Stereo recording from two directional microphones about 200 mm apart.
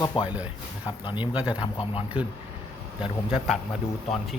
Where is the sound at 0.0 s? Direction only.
20° left (ahead or behind).